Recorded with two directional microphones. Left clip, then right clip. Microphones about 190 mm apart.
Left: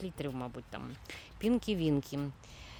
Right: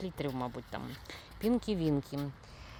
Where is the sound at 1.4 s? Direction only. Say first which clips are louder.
Even; 15° left (ahead or behind).